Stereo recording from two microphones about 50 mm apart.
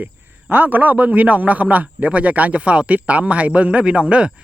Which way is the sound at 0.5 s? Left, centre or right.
Right.